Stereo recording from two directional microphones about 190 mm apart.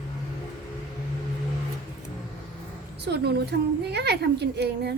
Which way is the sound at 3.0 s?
60° right (ahead or behind).